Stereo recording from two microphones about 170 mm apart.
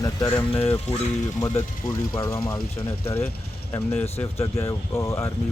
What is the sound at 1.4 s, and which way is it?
Speech, 15° left (ahead or behind).